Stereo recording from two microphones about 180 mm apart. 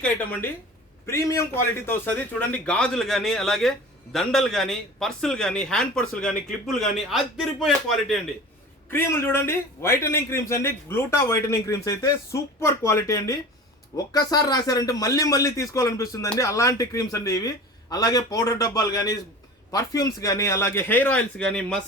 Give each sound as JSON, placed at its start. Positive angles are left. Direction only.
{"t": 0.0, "sound": "a man's voice", "side_deg": 10}
{"t": 8.9, "sound": "a man's voice", "side_deg": 15}